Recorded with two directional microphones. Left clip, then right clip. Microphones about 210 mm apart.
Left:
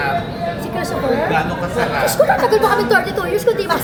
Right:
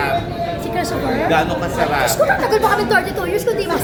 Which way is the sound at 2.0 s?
Centre (ahead or behind).